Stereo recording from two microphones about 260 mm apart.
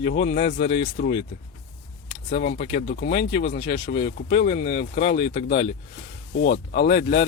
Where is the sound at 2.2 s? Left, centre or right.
Left.